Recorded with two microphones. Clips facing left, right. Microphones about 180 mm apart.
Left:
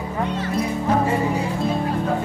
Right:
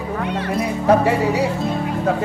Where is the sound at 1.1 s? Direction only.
75° right (ahead or behind).